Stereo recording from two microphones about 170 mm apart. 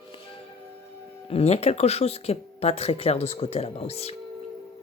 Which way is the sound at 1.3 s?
35° left (ahead or behind).